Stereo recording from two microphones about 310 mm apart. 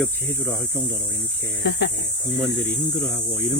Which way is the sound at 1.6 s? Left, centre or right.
Left.